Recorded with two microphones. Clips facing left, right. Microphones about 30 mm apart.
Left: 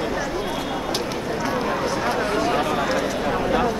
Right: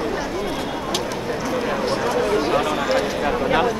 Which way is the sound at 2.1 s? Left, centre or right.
Left.